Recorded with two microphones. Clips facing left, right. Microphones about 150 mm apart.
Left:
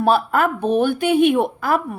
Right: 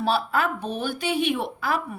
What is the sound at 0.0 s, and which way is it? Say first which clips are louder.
A woman's voice: left 7 dB; 55° left (ahead or behind).